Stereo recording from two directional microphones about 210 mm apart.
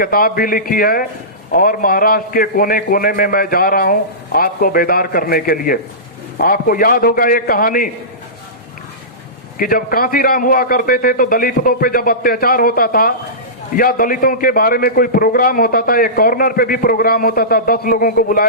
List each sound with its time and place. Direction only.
0.0 s a man's voice: 45° left (ahead or behind)
9.6 s a man's voice: 45° left (ahead or behind)